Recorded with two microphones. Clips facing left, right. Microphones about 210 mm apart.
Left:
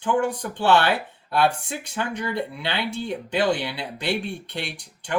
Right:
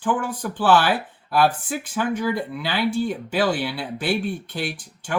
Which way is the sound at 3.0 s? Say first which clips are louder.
Right 2 dB; 5° right (ahead or behind).